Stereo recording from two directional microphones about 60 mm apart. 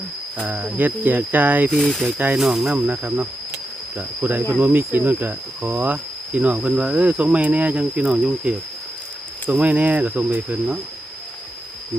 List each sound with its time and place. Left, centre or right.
0.3 s speech: right
1.8 s speech: centre
2.1 s speech: right
2.4 s speech: centre
2.7 s speech: right; by 8.3 s centre
9.5 s speech: right